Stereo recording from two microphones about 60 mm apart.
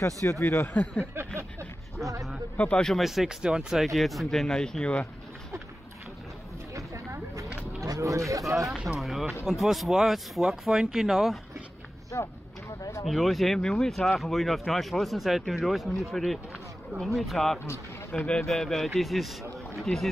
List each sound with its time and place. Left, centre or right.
0.0 s speech: left
0.5 s speech: left
1.1 s vehicle: right
2.5 s speech: left
2.8 s speech: centre
6.7 s a sound: right
7.8 s speech: right
9.5 s speech: centre
12.1 s speech: left
13.0 s speech: centre
18.1 s speech: centre
18.4 s speech: centre